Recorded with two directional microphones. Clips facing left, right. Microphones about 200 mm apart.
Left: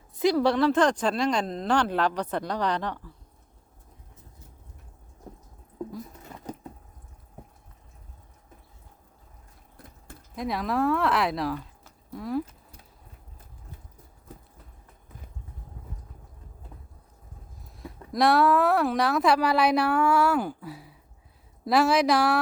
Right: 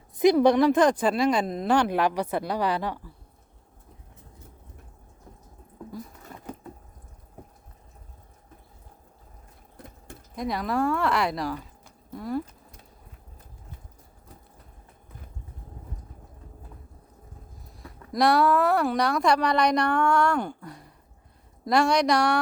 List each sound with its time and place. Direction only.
0.2 s speech: 20° right (ahead or behind)
9.7 s sewing machine: 20° right (ahead or behind)
10.3 s speech: centre (ahead or behind)
17.7 s speech: centre (ahead or behind)